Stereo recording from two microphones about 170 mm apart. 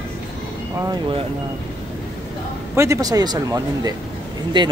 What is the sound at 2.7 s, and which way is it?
Speech, 20° right (ahead or behind).